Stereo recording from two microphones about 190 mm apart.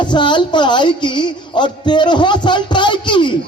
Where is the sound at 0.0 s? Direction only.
25° left (ahead or behind).